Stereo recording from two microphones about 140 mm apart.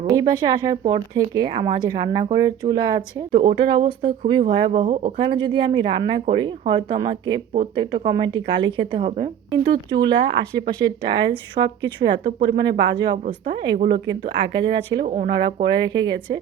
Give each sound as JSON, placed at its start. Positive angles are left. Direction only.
{"t": 0.1, "sound": "speech", "side_deg": -25}
{"t": 3.3, "sound": "speech", "side_deg": -40}
{"t": 11.2, "sound": "speech", "side_deg": -30}
{"t": 15.0, "sound": "speech", "side_deg": -55}
{"t": 15.6, "sound": "speech", "side_deg": -30}